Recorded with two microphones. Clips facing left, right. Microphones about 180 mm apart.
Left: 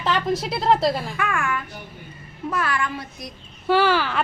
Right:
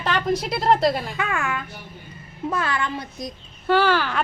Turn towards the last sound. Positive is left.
turn(degrees=5)  # may be behind; listen again after turning